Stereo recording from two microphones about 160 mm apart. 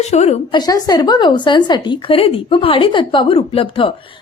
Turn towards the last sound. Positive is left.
turn(degrees=35)  # may be behind; listen again after turning